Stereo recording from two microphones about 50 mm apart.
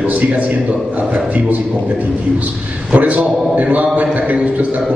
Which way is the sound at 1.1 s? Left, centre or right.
Right.